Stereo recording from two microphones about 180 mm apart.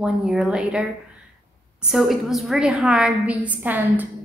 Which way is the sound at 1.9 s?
Centre (ahead or behind).